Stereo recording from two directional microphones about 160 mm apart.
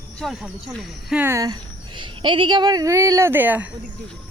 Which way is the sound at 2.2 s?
30° right (ahead or behind).